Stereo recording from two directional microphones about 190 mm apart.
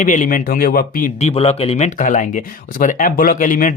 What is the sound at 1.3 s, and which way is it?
Speech, 30° left (ahead or behind).